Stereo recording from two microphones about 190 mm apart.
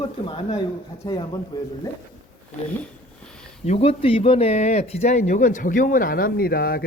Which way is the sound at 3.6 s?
30° left (ahead or behind).